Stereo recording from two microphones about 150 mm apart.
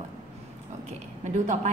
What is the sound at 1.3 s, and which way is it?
Speech, 55° right (ahead or behind).